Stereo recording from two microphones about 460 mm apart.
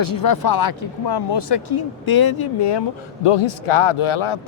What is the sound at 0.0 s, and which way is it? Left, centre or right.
Speech, left.